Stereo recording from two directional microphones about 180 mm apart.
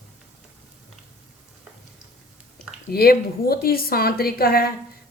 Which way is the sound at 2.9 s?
55° left (ahead or behind).